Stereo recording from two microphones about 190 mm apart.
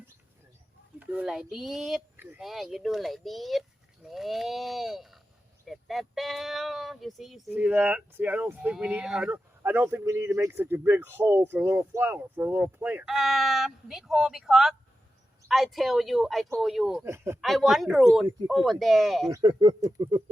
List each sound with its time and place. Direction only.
0.9 s speech: 5° right (ahead or behind)
17.1 s speech: 15° right (ahead or behind)
17.4 s speech: centre (ahead or behind)
19.3 s speech: 25° right (ahead or behind)